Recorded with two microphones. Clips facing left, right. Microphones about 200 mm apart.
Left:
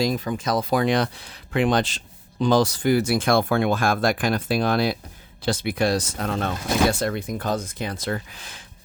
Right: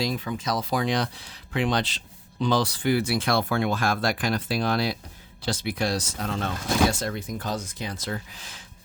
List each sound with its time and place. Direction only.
0.0 s speech: 45° left (ahead or behind)